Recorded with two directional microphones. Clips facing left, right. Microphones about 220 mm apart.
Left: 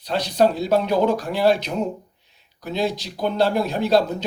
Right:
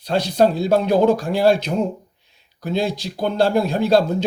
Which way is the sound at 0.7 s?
50° right (ahead or behind).